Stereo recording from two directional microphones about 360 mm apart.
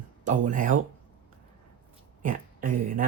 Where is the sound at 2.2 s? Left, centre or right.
Right.